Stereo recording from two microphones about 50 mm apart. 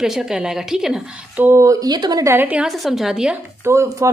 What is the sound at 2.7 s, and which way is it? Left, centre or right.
Speech, centre.